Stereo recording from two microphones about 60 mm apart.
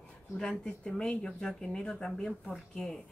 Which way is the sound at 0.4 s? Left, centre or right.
Centre.